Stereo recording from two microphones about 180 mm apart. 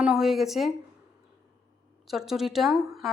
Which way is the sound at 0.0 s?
Centre (ahead or behind).